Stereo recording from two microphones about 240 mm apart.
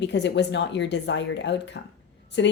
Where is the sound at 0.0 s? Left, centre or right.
Left.